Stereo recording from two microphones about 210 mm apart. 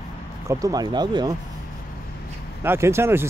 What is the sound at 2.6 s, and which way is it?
Speech, 10° right (ahead or behind).